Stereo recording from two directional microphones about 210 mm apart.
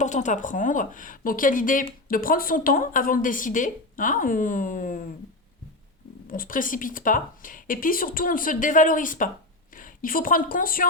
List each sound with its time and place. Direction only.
0.0 s speech: 35° left (ahead or behind)
6.3 s a woman's voice: 40° left (ahead or behind)